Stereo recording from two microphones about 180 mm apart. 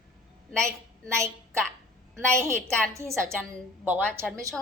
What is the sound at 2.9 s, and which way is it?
Speech, 15° right (ahead or behind).